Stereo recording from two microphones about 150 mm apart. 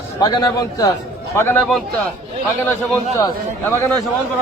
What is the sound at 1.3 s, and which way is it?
Speech, 15° left (ahead or behind).